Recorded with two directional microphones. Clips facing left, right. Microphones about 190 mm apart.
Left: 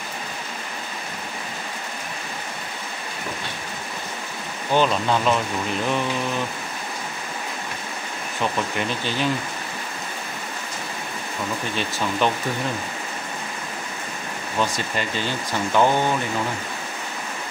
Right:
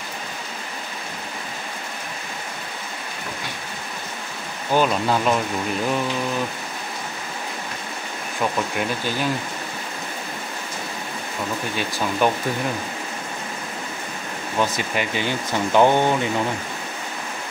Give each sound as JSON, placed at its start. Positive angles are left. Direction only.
{"t": 4.7, "sound": "speech", "side_deg": -5}
{"t": 8.4, "sound": "speech", "side_deg": -5}
{"t": 12.2, "sound": "speech", "side_deg": -10}
{"t": 14.6, "sound": "speech", "side_deg": -15}